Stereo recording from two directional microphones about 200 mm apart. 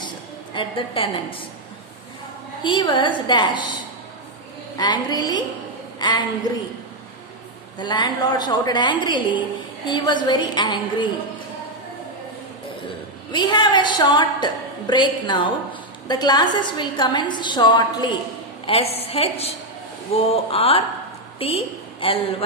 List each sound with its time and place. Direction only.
0.5 s a woman's voice: 25° left (ahead or behind)
2.6 s a woman's voice: 25° left (ahead or behind)
4.8 s a woman's voice: 20° left (ahead or behind)
7.8 s a woman's voice: 20° left (ahead or behind)
13.3 s a woman's voice: 20° left (ahead or behind)